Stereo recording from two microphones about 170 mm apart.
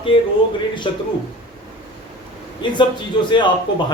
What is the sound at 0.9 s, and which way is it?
Speech, 30° left (ahead or behind).